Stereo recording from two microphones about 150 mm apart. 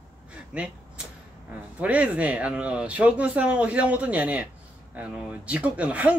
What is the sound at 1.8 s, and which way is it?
Speech, 10° right (ahead or behind).